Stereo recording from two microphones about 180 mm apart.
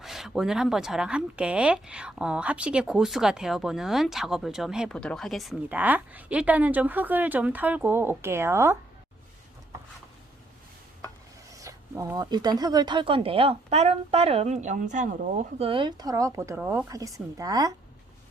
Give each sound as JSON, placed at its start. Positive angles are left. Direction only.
{"t": 0.0, "sound": "speech", "side_deg": 0}
{"t": 11.5, "sound": "speech", "side_deg": -15}